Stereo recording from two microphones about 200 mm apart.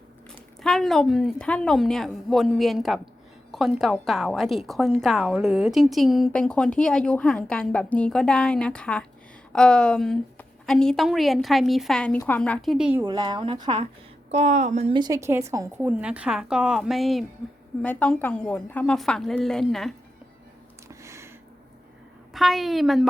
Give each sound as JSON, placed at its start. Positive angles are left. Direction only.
{"t": 0.6, "sound": "a woman's voice", "side_deg": 0}
{"t": 13.0, "sound": "speech", "side_deg": -20}
{"t": 14.3, "sound": "speech", "side_deg": -35}
{"t": 14.9, "sound": "a woman's voice", "side_deg": -20}
{"t": 20.8, "sound": "a sound", "side_deg": -15}
{"t": 22.3, "sound": "a woman's voice", "side_deg": 0}